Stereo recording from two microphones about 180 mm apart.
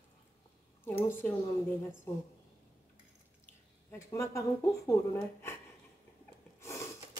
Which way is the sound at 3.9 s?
15° left (ahead or behind).